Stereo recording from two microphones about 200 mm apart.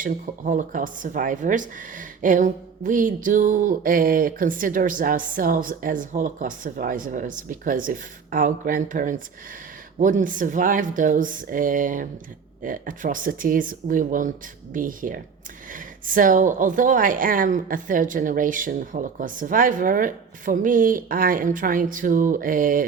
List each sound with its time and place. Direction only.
0.0 s a woman's voice: 40° right (ahead or behind)